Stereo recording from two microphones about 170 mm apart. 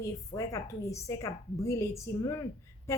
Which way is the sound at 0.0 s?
20° left (ahead or behind).